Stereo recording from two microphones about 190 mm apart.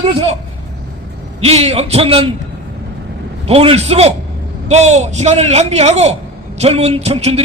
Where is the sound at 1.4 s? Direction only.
35° right (ahead or behind).